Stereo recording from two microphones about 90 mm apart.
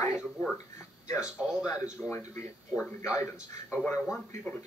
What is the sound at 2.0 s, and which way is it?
Speech, 30° left (ahead or behind).